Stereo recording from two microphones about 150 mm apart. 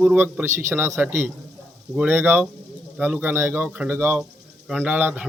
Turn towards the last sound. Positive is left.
turn(degrees=-10)  # may be behind; listen again after turning